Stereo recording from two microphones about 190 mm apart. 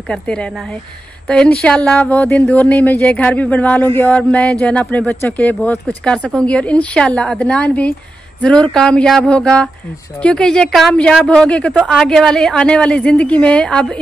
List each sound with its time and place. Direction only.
0.1 s a woman's voice: 5° left (ahead or behind)